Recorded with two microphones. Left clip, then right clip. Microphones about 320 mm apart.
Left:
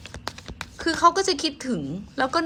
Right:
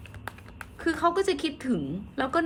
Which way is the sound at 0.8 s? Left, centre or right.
Centre.